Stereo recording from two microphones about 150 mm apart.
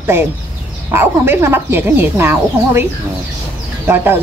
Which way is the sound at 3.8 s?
15° right (ahead or behind).